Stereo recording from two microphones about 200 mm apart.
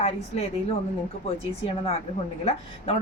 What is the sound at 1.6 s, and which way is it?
A woman's voice, 30° left (ahead or behind).